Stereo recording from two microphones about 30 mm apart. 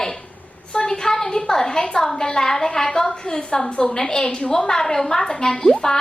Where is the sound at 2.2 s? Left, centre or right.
Centre.